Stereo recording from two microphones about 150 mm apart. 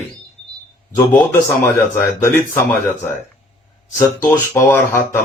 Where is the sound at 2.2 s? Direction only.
15° left (ahead or behind).